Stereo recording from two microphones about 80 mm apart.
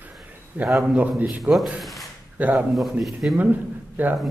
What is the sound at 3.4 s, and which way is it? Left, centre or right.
Speech, right.